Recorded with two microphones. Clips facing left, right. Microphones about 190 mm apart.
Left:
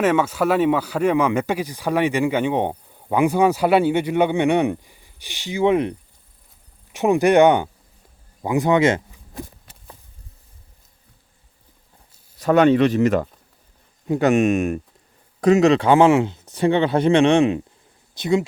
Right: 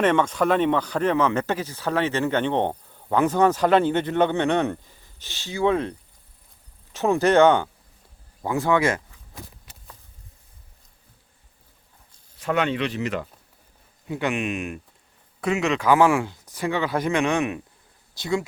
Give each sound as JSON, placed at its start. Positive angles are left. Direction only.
{"t": 0.0, "sound": "speech", "side_deg": 5}
{"t": 12.4, "sound": "speech", "side_deg": 40}